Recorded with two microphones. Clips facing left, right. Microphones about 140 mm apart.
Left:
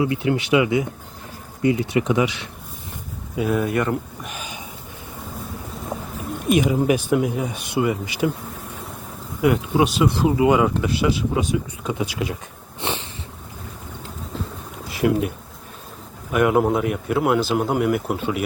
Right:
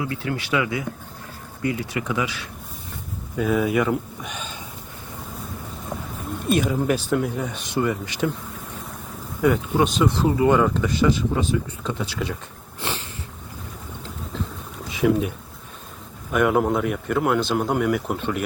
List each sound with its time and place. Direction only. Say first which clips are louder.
0.0 s speech: left 6 dB; 20° left (ahead or behind)
3.3 s speech: even; centre (ahead or behind)
5.9 s a sound: left 2 dB; 15° left (ahead or behind)
6.5 s speech: left 3 dB; 15° left (ahead or behind)
9.4 s speech: left 1 dB; 10° left (ahead or behind)
14.8 s a sound: even; centre (ahead or behind)
16.3 s speech: left 2 dB; centre (ahead or behind)